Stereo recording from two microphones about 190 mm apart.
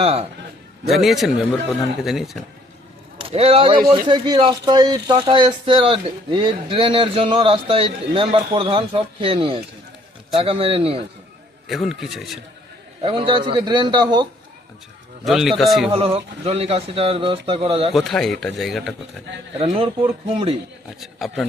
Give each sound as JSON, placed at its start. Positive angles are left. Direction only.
{"t": 0.0, "sound": "speech", "side_deg": -30}
{"t": 0.9, "sound": "speech", "side_deg": 0}
{"t": 3.2, "sound": "speech", "side_deg": -30}
{"t": 11.7, "sound": "speech", "side_deg": 0}
{"t": 13.0, "sound": "speech", "side_deg": -25}
{"t": 15.2, "sound": "speech", "side_deg": 0}
{"t": 15.9, "sound": "speech", "side_deg": -30}
{"t": 17.9, "sound": "speech", "side_deg": 0}
{"t": 19.5, "sound": "speech", "side_deg": -30}
{"t": 21.0, "sound": "speech", "side_deg": 0}